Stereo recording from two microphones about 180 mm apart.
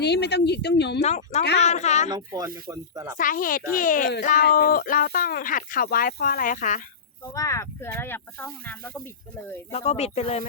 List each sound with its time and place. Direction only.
0.0 s a woman's voice: 70° left (ahead or behind)
1.0 s speech: 40° left (ahead or behind)
2.0 s speech: 20° right (ahead or behind)
3.2 s speech: 50° left (ahead or behind)
7.3 s speech: 15° left (ahead or behind)
9.7 s speech: 35° left (ahead or behind)